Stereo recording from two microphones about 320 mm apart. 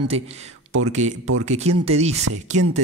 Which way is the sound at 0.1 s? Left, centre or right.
Centre.